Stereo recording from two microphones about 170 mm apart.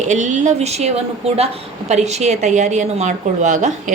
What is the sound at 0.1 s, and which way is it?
A woman's voice, 45° right (ahead or behind).